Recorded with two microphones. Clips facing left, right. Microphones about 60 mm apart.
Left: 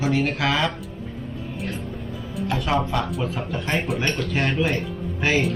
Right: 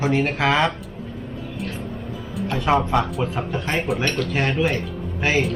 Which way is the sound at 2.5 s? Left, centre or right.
Right.